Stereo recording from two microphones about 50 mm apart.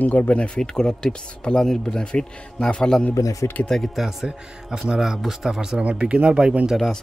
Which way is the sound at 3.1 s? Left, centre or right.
Left.